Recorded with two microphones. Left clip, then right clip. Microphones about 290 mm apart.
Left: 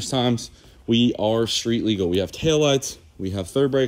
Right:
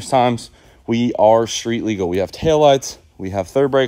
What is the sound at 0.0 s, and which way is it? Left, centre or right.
Speech, centre.